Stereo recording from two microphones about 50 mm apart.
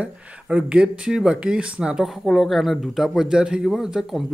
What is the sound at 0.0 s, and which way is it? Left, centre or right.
Speech, right.